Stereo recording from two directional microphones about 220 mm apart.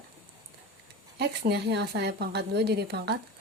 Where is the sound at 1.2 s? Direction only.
50° right (ahead or behind).